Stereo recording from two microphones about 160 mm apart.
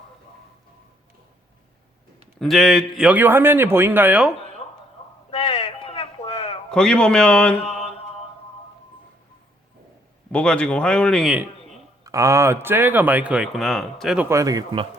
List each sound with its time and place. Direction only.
2.4 s speech: centre (ahead or behind)
5.3 s a sound: 25° left (ahead or behind)
6.7 s speech: 5° left (ahead or behind)
7.6 s mantra: 40° left (ahead or behind)
10.3 s speech: 5° left (ahead or behind)
12.0 s speech: 20° right (ahead or behind); by 14.3 s centre (ahead or behind)
14.3 s speech: 20° right (ahead or behind)